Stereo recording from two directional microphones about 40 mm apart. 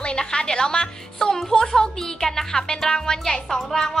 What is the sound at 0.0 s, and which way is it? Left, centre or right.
A woman's voice, left.